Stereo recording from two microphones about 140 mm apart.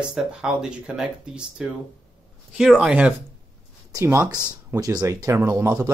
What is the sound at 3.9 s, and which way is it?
Speech, 20° right (ahead or behind).